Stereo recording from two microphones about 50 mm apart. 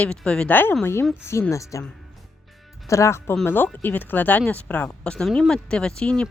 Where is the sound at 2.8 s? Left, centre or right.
Left.